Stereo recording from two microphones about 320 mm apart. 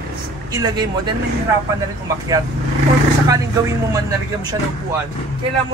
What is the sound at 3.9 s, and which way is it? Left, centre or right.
Speech, centre.